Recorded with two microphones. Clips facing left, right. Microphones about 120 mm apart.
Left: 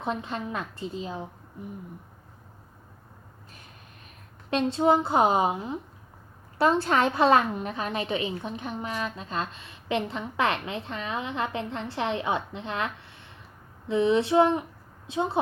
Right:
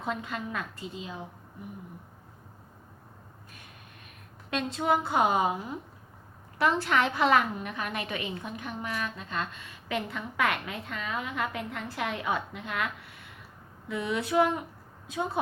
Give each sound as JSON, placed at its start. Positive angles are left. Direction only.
{"t": 0.0, "sound": "a woman's voice", "side_deg": 25}
{"t": 4.5, "sound": "a woman's voice", "side_deg": 30}